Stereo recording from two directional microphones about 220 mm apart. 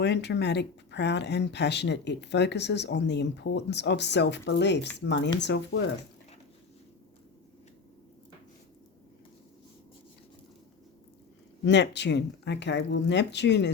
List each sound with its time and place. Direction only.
0.0 s speech: 50° left (ahead or behind)
11.6 s speech: 50° left (ahead or behind)